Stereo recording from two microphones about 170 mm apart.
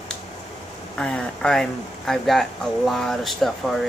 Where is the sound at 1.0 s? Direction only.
5° left (ahead or behind).